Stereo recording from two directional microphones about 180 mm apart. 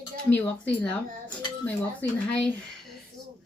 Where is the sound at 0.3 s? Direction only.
10° left (ahead or behind).